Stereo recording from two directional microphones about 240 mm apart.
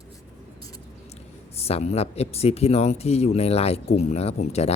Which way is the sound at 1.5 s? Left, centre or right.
Left.